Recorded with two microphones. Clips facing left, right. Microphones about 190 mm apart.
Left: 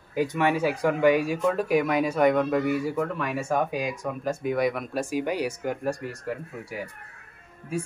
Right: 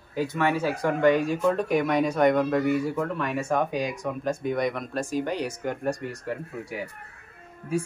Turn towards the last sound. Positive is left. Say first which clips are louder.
# right 3 dB
turn(degrees=-45)  # may be behind; listen again after turning